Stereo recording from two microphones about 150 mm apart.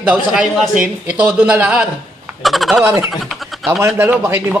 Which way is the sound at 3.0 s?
Centre (ahead or behind).